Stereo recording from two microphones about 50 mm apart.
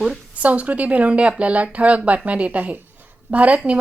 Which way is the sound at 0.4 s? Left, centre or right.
Right.